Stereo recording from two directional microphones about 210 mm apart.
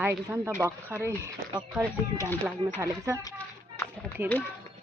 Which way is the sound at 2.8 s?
15° right (ahead or behind).